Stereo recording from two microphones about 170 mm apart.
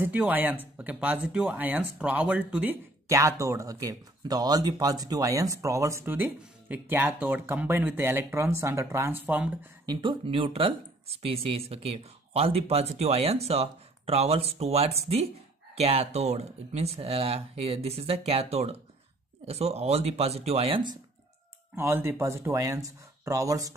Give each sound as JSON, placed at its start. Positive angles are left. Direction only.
{"t": 0.0, "sound": "speech", "side_deg": -10}
{"t": 9.8, "sound": "speech", "side_deg": -30}
{"t": 21.7, "sound": "speech", "side_deg": -15}